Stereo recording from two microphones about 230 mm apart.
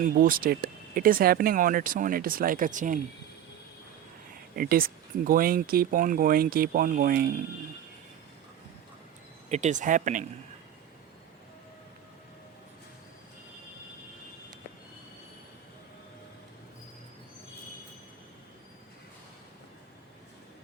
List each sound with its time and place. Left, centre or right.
0.0 s speech: right
4.5 s speech: right
9.5 s speech: right